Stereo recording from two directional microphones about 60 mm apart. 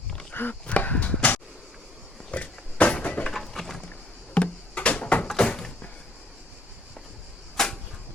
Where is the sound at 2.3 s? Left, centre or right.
Left.